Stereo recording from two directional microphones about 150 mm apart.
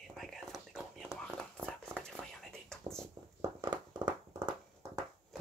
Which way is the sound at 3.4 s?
30° right (ahead or behind).